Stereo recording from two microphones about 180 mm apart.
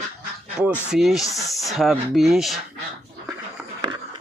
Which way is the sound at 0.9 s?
Centre (ahead or behind).